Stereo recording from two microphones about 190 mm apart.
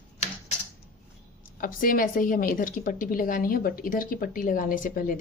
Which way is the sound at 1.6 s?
45° left (ahead or behind).